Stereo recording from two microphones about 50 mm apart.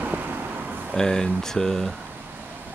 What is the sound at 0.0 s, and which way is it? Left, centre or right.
Vehicle, right.